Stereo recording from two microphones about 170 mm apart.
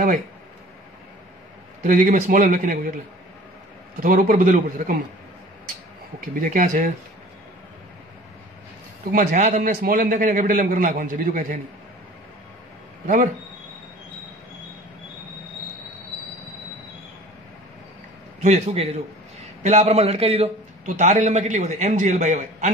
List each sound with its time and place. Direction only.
1.8 s a man's voice: 50° right (ahead or behind)
4.0 s a man's voice: 50° right (ahead or behind)
6.4 s a man's voice: 50° right (ahead or behind)
9.1 s a man's voice: 45° right (ahead or behind)
9.6 s a man's voice: 60° right (ahead or behind)
13.0 s speech: 50° right (ahead or behind)
18.4 s a man's voice: 40° right (ahead or behind)